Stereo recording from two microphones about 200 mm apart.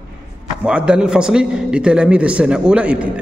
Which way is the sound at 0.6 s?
5° right (ahead or behind).